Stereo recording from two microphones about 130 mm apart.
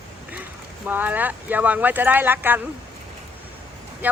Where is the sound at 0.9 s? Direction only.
15° right (ahead or behind).